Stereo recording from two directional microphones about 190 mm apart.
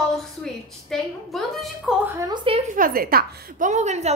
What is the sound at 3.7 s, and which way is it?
Speech, 35° right (ahead or behind).